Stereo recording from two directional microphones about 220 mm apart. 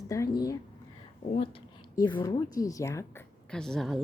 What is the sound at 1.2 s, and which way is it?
Speech, 30° left (ahead or behind).